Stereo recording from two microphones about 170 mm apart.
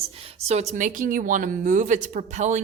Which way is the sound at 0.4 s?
40° right (ahead or behind).